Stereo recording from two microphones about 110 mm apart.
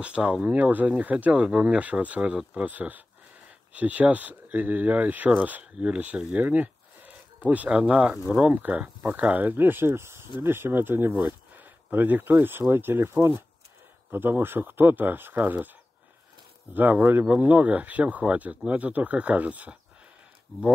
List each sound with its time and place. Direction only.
0.0 s speech: 10° right (ahead or behind)
16.7 s speech: 15° right (ahead or behind)